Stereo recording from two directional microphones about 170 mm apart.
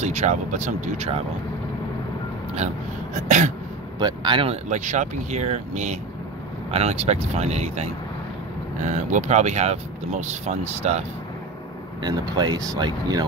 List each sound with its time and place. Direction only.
0.0 s speech: 40° right (ahead or behind)
3.3 s speech: 45° right (ahead or behind)
4.0 s speech: 25° right (ahead or behind)
4.6 s speech: 45° right (ahead or behind)
12.0 s speech: 25° right (ahead or behind)